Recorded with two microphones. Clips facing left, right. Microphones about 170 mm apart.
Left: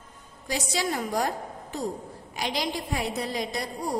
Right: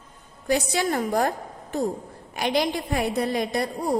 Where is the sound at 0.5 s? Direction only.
55° right (ahead or behind).